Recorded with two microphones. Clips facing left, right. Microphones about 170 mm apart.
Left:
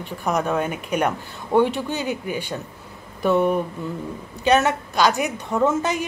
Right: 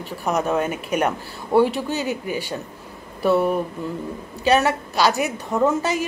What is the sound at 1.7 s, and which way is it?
Speech, 40° right (ahead or behind).